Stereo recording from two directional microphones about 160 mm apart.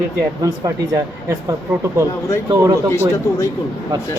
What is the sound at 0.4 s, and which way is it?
Speech, 20° right (ahead or behind).